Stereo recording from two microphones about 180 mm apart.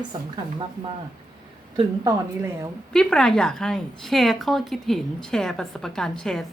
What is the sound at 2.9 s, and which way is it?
A woman's voice, 5° left (ahead or behind).